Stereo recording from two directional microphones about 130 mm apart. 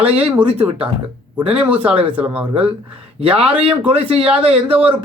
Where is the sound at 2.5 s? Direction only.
45° right (ahead or behind).